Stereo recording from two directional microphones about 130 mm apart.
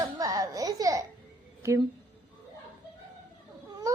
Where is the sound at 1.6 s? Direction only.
20° right (ahead or behind).